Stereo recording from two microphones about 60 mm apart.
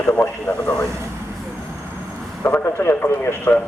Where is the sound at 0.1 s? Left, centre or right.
Left.